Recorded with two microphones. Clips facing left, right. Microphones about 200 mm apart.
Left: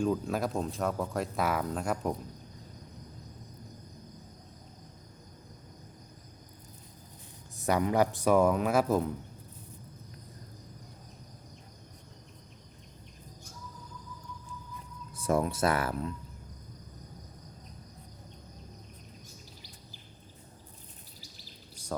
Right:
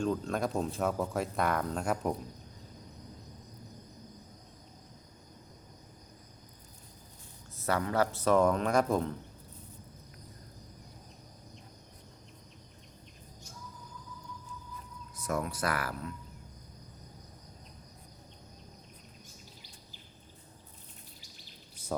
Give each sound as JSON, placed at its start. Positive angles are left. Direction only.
{"t": 0.0, "sound": "speech", "side_deg": 5}
{"t": 7.6, "sound": "speech", "side_deg": 15}
{"t": 15.1, "sound": "speech", "side_deg": 30}